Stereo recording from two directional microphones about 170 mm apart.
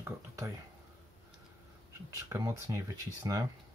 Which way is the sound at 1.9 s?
20° right (ahead or behind).